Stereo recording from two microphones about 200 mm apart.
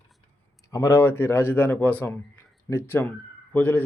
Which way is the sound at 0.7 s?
15° left (ahead or behind).